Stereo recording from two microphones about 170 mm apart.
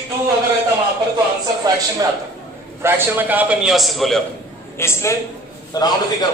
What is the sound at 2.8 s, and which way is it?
A man's voice, 10° right (ahead or behind).